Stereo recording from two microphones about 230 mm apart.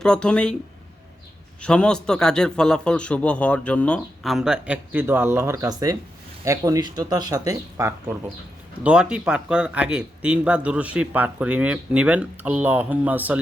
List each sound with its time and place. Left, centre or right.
0.0 s a man's voice: centre
1.6 s a man's voice: centre